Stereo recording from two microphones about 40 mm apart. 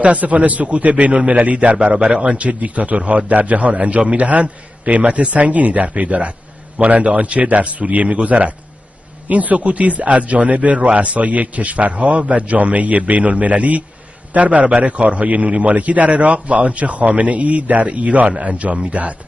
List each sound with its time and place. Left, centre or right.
0.0 s a man's voice: right
2.0 s a man's voice: right
2.3 s a man's voice: right